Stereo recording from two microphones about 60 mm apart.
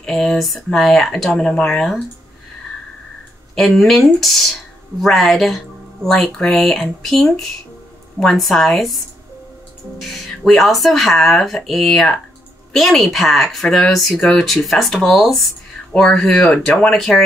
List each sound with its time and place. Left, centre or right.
0.0 s speech: centre
3.5 s speech: centre